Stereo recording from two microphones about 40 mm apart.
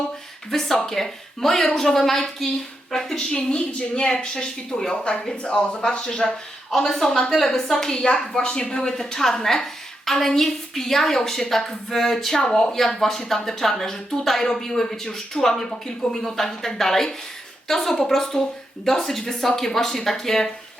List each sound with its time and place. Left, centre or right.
0.5 s a woman's voice: centre
3.3 s speech: left
6.7 s a woman's voice: centre